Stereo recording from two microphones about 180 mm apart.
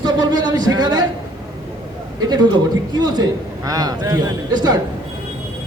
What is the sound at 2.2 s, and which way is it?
A man's voice, 25° right (ahead or behind).